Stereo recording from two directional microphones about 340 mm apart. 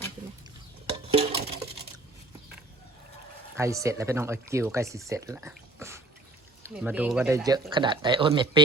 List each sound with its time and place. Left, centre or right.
0.9 s music: centre
3.6 s speech: centre